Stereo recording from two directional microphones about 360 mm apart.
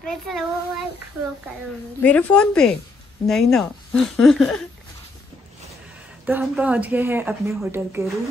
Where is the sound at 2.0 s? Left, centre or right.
Centre.